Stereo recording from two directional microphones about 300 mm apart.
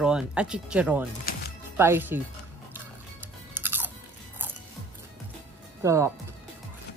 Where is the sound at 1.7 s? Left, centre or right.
Centre.